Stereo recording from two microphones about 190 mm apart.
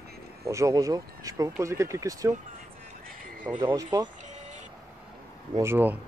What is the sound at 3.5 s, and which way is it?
Speech, 20° right (ahead or behind).